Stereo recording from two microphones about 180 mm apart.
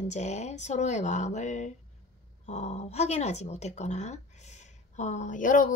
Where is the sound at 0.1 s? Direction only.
40° left (ahead or behind).